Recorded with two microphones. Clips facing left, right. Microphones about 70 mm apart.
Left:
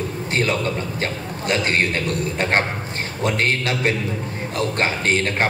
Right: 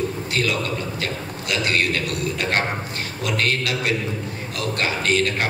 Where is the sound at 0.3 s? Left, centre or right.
Left.